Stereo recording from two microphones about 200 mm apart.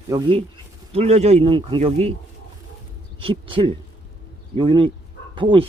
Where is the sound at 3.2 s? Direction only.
25° right (ahead or behind).